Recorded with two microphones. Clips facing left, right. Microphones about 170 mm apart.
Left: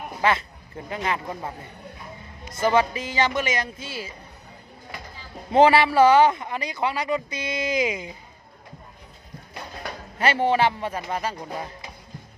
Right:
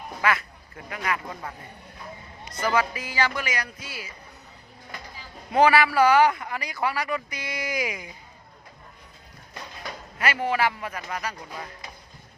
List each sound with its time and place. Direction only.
0.2 s speech: 25° left (ahead or behind)
5.5 s speech: 25° left (ahead or behind)
10.2 s speech: 30° left (ahead or behind)